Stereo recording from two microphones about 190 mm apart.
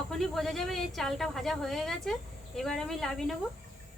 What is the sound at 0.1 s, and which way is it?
Speech, centre (ahead or behind).